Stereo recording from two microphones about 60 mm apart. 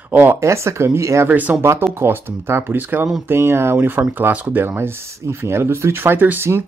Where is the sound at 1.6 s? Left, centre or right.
Right.